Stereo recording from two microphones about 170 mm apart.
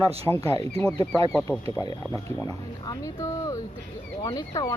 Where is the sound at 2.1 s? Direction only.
20° left (ahead or behind).